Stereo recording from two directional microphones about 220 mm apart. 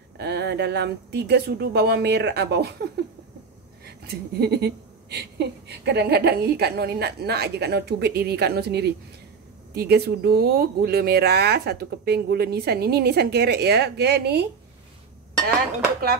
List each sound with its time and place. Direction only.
0.2 s speech: 50° right (ahead or behind)
3.8 s speech: 45° right (ahead or behind)